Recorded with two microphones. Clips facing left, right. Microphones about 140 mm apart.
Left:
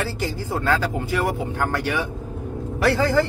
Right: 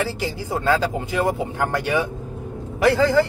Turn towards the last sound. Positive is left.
turn(degrees=-15)  # may be behind; listen again after turning